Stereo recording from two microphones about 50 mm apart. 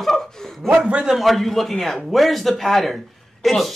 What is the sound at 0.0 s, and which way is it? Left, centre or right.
Chuckle, centre.